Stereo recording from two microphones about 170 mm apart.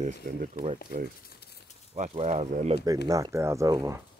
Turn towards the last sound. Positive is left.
turn(degrees=-20)  # may be behind; listen again after turning